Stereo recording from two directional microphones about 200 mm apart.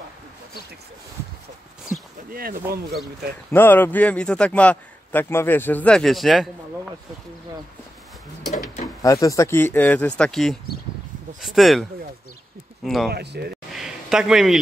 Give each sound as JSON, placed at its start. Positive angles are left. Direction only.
{"t": 2.3, "sound": "speech", "side_deg": -45}
{"t": 3.5, "sound": "a man's voice", "side_deg": 10}
{"t": 9.0, "sound": "a man's voice", "side_deg": 15}
{"t": 12.8, "sound": "speech", "side_deg": 0}
{"t": 13.1, "sound": "speech", "side_deg": -55}
{"t": 13.7, "sound": "a sound", "side_deg": 0}